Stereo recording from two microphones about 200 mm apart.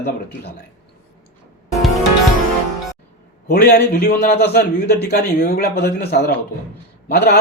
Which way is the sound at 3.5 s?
50° left (ahead or behind).